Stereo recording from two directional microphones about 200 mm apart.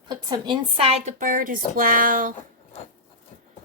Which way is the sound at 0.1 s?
20° right (ahead or behind).